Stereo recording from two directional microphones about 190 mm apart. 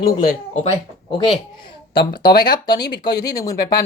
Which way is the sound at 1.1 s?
25° left (ahead or behind).